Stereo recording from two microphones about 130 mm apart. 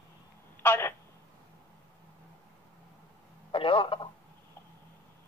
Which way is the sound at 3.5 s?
45° left (ahead or behind).